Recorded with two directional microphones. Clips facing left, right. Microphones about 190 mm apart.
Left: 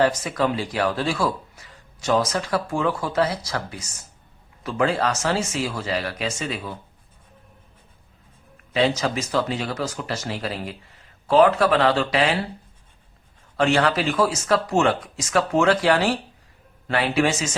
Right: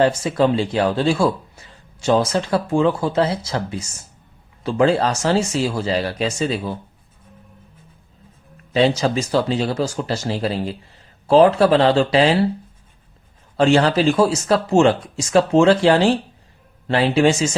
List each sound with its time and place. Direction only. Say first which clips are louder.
0.0 s speech: right 4 dB; 25° right (ahead or behind)
8.7 s speech: right 4 dB; 30° right (ahead or behind)
13.6 s speech: right 5 dB; 30° right (ahead or behind)